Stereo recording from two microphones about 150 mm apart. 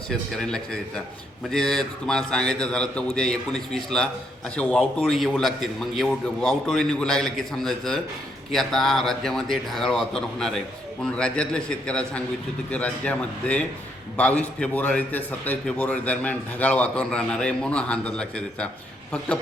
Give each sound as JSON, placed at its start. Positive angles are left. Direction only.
{"t": 0.1, "sound": "a man's voice", "side_deg": 5}